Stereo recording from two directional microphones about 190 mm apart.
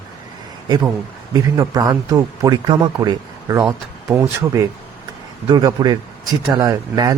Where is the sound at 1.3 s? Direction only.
20° right (ahead or behind).